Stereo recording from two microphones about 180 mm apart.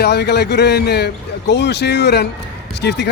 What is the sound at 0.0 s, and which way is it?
A man's voice, 70° left (ahead or behind).